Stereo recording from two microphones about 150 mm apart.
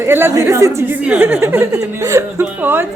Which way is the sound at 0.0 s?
15° right (ahead or behind).